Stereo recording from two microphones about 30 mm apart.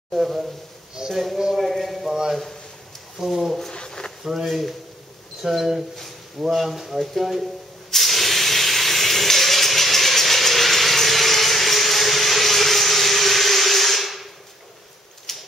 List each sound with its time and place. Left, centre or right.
0.1 s speech: centre
1.5 s clip-clop: centre
2.0 s a man's voice: centre
3.7 s a sound: left
4.2 s speech: centre
7.9 s hiss: centre
15.3 s typewriter: centre